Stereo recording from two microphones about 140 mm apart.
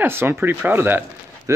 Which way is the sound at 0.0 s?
15° right (ahead or behind).